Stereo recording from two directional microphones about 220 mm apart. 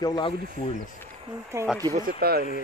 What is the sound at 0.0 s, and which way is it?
Speech, 20° left (ahead or behind).